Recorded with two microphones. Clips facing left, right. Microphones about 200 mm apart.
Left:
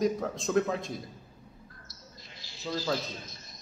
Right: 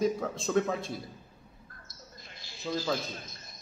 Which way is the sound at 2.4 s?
50° right (ahead or behind).